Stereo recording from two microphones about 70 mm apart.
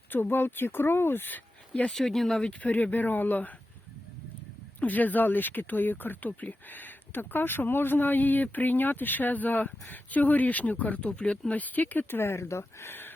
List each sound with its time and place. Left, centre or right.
0.1 s speech: left
1.9 s speech: centre
2.5 s speech: left
4.8 s speech: left
12.2 s speech: left